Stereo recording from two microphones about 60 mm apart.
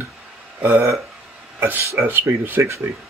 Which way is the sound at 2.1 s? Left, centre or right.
Right.